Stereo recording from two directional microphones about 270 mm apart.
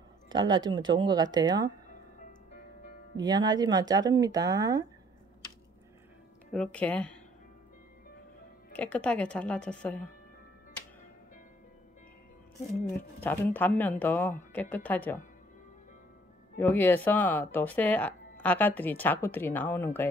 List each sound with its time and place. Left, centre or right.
0.3 s speech: centre
3.2 s speech: centre
6.5 s speech: centre
8.7 s speech: centre
13.2 s speech: centre
16.5 s speech: centre